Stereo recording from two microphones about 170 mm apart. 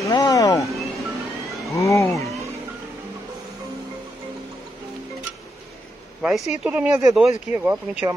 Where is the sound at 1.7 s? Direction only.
20° left (ahead or behind).